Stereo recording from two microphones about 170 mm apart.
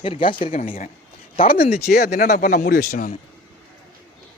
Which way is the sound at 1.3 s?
60° left (ahead or behind).